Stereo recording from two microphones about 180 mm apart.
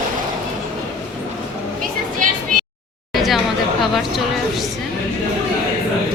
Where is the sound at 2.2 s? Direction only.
45° right (ahead or behind).